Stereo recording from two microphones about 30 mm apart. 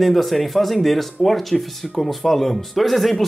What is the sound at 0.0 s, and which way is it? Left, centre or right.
Speech, centre.